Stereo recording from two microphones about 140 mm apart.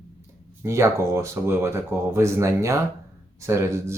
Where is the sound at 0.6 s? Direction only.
20° right (ahead or behind).